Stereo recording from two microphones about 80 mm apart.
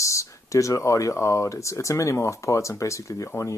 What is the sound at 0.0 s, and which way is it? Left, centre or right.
Speech, left.